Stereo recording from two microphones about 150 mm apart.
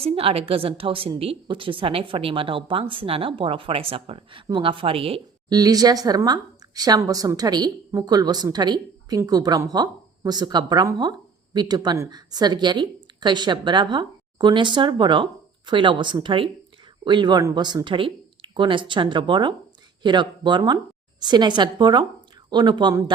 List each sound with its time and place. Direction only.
0.0 s a woman's voice: 40° right (ahead or behind)
5.5 s a woman's voice: 25° right (ahead or behind)